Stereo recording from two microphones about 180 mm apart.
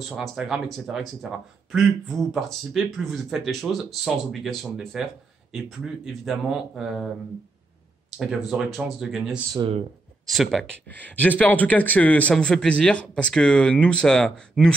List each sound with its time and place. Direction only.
0.1 s speech: centre (ahead or behind)
6.0 s speech: centre (ahead or behind)
8.2 s speech: centre (ahead or behind)
9.6 s speech: 25° right (ahead or behind)
10.2 s speech: centre (ahead or behind)